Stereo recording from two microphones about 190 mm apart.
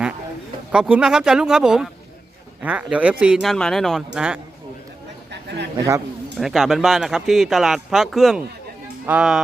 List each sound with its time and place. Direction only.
0.7 s speech: 5° right (ahead or behind)
5.3 s chatter: 65° right (ahead or behind)
6.4 s speech: centre (ahead or behind)